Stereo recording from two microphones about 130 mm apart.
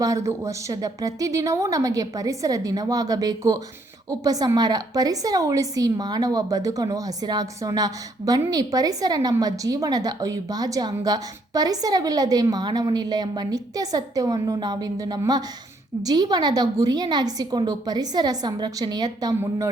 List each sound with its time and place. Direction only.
0.0 s a woman's voice: 25° right (ahead or behind)